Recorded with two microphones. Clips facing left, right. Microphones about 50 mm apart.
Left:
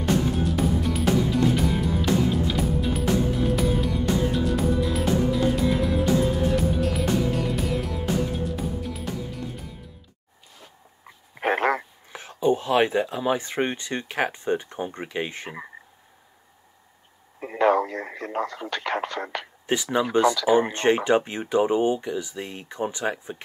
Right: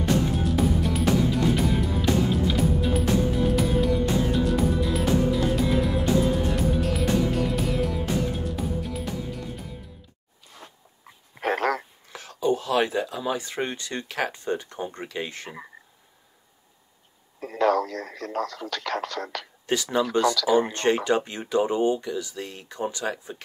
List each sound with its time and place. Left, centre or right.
0.4 s music: centre
11.1 s a sound: centre
17.4 s speech: left